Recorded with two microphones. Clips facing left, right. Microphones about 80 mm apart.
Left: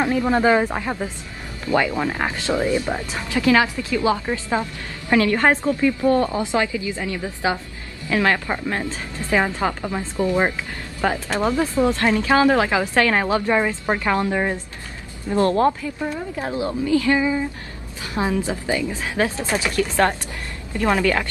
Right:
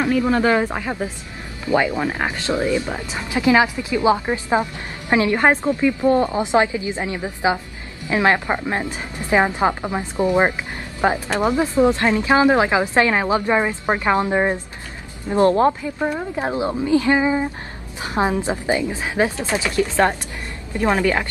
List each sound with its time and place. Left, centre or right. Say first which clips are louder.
0.2 s speech: left 2 dB; centre
0.7 s a woman's voice: even; centre
1.7 s a woman's voice: right 1 dB; centre